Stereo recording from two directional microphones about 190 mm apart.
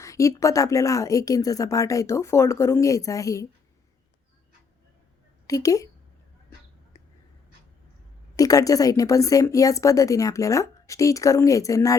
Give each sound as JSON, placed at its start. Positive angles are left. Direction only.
{"t": 0.0, "sound": "a woman's voice", "side_deg": 15}
{"t": 5.5, "sound": "a woman's voice", "side_deg": 20}
{"t": 8.4, "sound": "a woman's voice", "side_deg": 20}